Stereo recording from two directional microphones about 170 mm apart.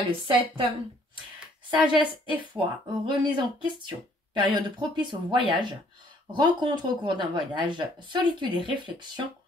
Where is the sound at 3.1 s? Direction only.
25° right (ahead or behind).